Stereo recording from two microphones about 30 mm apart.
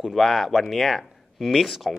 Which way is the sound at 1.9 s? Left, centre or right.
Centre.